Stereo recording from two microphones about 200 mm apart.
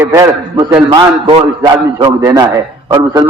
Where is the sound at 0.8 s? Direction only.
25° right (ahead or behind).